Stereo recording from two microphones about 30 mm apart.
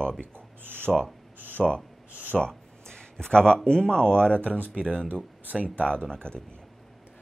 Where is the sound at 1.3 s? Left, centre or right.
Right.